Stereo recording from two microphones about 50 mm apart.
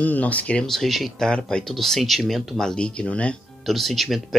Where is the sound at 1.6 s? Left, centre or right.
Centre.